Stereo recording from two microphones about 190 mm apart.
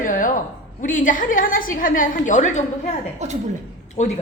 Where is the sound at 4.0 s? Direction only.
40° left (ahead or behind).